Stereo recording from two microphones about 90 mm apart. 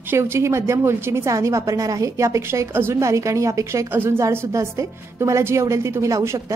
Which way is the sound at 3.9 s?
25° right (ahead or behind).